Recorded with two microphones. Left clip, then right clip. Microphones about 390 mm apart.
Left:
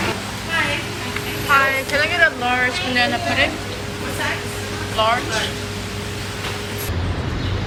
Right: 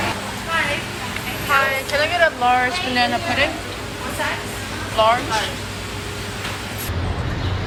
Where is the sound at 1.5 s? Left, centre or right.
Centre.